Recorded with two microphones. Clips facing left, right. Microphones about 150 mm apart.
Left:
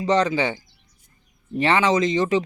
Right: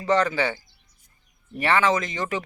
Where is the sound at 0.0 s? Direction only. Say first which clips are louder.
Left 2 dB; 15° left (ahead or behind).